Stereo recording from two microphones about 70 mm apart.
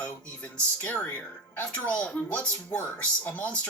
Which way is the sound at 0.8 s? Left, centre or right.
Centre.